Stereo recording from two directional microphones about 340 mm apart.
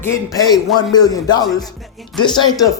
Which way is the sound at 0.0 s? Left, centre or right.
Centre.